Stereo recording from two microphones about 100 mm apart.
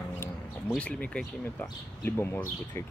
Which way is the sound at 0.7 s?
10° left (ahead or behind).